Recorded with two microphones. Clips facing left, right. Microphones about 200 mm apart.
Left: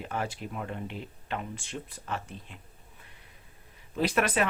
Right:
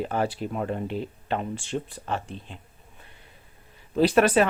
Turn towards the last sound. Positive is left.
turn(degrees=-30)  # may be behind; listen again after turning